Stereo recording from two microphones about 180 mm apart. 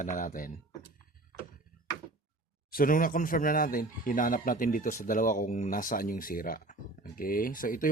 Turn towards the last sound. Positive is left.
turn(degrees=50)  # may be behind; listen again after turning